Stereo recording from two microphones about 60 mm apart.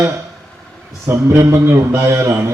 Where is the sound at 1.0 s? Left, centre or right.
Right.